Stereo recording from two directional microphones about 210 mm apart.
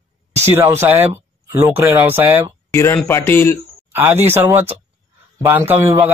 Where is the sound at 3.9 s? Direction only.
10° right (ahead or behind).